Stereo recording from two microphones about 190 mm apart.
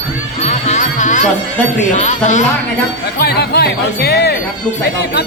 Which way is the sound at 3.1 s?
55° left (ahead or behind).